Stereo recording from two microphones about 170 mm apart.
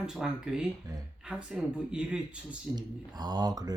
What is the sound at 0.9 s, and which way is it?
Speech, 20° right (ahead or behind).